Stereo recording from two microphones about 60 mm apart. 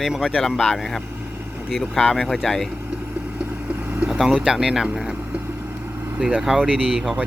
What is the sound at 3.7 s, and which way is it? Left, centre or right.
Vehicle, right.